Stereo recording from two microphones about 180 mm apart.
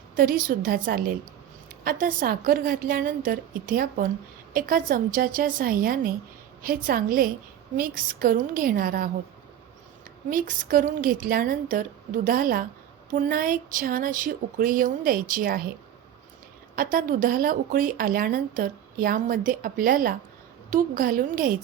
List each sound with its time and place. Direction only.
0.2 s a woman's voice: 55° right (ahead or behind)
10.2 s speech: 50° right (ahead or behind)
16.7 s speech: 50° right (ahead or behind)